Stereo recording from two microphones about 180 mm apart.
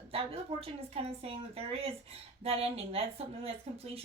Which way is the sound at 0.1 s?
30° right (ahead or behind).